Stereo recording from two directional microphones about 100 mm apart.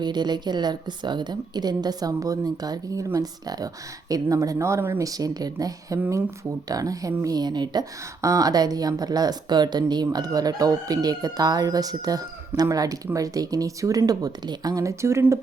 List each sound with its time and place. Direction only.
0.0 s a woman's voice: 45° right (ahead or behind); by 5.0 s 25° right (ahead or behind)
5.0 s a woman's voice: 40° right (ahead or behind)